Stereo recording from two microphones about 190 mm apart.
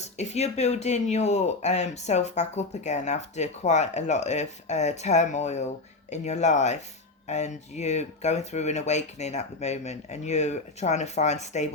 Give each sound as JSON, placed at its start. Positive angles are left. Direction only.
{"t": 0.0, "sound": "speech", "side_deg": 35}